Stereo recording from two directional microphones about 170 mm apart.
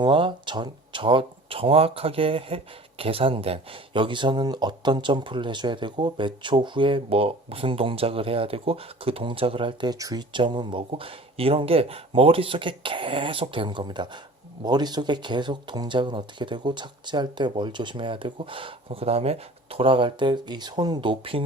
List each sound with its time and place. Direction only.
0.0 s speech: 30° right (ahead or behind)